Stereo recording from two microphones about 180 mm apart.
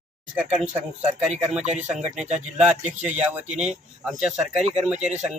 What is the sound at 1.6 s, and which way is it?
Speech, 40° right (ahead or behind).